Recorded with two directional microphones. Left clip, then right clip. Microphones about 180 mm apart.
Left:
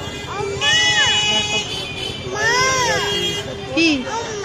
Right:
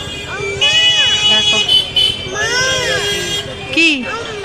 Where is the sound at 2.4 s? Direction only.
5° right (ahead or behind).